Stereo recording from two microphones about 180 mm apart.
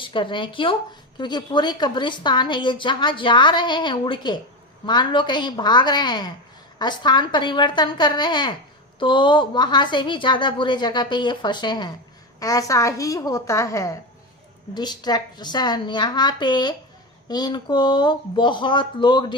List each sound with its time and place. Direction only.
0.0 s a woman's voice: 25° left (ahead or behind)